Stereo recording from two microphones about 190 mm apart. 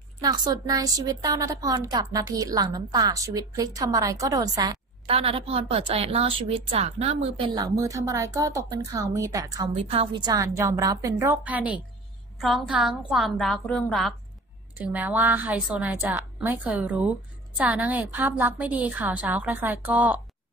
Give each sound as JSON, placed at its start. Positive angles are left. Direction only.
{"t": 0.2, "sound": "a woman's voice", "side_deg": -20}
{"t": 9.8, "sound": "a woman's voice", "side_deg": -30}
{"t": 10.3, "sound": "a woman's voice", "side_deg": -15}
{"t": 14.8, "sound": "a woman's voice", "side_deg": -10}